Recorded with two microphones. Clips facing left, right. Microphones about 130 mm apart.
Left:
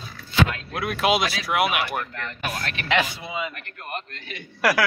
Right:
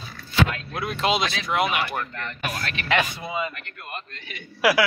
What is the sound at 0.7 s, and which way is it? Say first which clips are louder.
A man's voice: left 4 dB; 5° left (ahead or behind).